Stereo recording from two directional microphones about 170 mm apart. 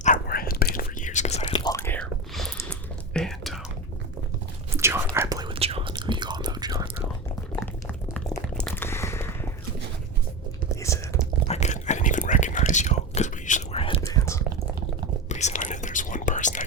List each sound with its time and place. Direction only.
0.0 s whispering: 55° left (ahead or behind)
1.5 s whispering: 20° left (ahead or behind); by 3.6 s centre (ahead or behind)
4.7 s whispering: 15° right (ahead or behind)
5.5 s whispering: 35° right (ahead or behind)
7.5 s liquid: 10° left (ahead or behind)
8.3 s a sound: 10° left (ahead or behind)
10.8 s whispering: 15° left (ahead or behind)
11.4 s whispering: 40° left (ahead or behind)
14.0 s whispering: 15° left (ahead or behind)
15.3 s whispering: 45° left (ahead or behind)